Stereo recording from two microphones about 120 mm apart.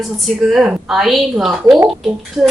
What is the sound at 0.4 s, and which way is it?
A woman's voice, 5° right (ahead or behind).